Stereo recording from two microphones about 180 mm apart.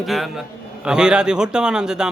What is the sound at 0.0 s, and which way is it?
A man's voice, centre (ahead or behind).